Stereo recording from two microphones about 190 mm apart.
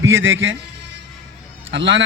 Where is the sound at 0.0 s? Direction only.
85° right.